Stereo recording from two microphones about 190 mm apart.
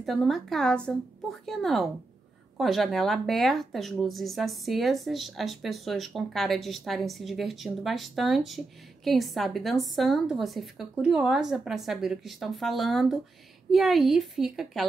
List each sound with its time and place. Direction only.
0.0 s speech: centre (ahead or behind)